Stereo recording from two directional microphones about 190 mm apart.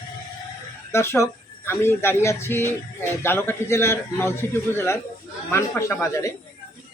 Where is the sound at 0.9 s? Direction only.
15° left (ahead or behind).